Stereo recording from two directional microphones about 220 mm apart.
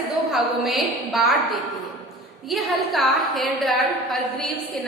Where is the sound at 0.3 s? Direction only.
Centre (ahead or behind).